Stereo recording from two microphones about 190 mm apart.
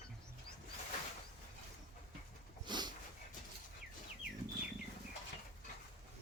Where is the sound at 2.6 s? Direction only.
25° right (ahead or behind).